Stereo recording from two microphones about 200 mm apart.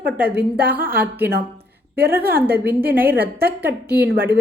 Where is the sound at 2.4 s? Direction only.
10° right (ahead or behind).